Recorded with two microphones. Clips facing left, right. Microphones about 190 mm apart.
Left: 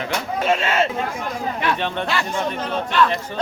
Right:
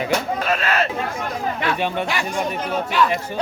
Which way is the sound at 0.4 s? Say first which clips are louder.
Left 2 dB; 25° left (ahead or behind).